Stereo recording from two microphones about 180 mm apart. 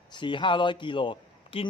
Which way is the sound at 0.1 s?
25° left (ahead or behind).